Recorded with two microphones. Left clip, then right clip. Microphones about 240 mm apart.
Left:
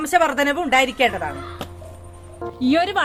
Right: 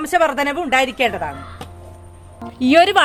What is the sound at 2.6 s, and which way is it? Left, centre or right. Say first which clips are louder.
Speech: right 7 dB; right.